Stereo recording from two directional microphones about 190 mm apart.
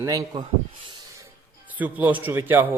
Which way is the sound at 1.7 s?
10° right (ahead or behind).